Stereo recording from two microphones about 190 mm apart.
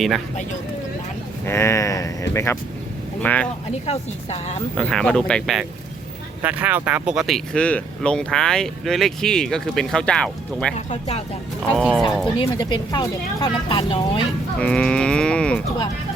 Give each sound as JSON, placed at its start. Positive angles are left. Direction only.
{"t": 1.5, "sound": "speech", "side_deg": 15}
{"t": 3.8, "sound": "speech", "side_deg": 35}
{"t": 4.8, "sound": "speech", "side_deg": 5}
{"t": 6.4, "sound": "speech", "side_deg": -10}
{"t": 10.8, "sound": "speech", "side_deg": 35}
{"t": 11.8, "sound": "speech", "side_deg": -5}
{"t": 12.4, "sound": "speech", "side_deg": 25}
{"t": 14.6, "sound": "speech", "side_deg": 5}